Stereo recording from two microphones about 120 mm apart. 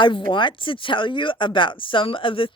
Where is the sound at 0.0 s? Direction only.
40° left (ahead or behind).